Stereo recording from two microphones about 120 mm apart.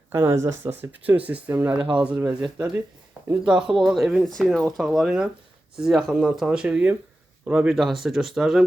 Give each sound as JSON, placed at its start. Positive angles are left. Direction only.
{"t": 0.1, "sound": "speech", "side_deg": -20}
{"t": 3.4, "sound": "speech", "side_deg": -5}